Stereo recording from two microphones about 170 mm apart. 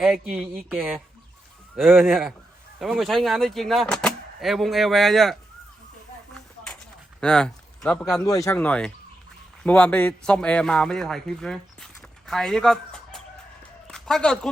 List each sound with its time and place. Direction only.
0.0 s speech: 5° right (ahead or behind)
7.2 s speech: 5° left (ahead or behind)
8.1 s speech: 20° left (ahead or behind)
8.5 s speech: 5° left (ahead or behind)
13.8 s a sound: 5° left (ahead or behind)